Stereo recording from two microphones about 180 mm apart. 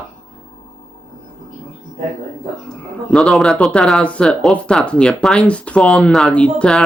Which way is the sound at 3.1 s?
Centre (ahead or behind).